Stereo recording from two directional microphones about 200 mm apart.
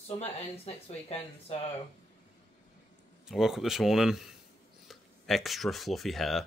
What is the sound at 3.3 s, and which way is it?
Speech, centre (ahead or behind).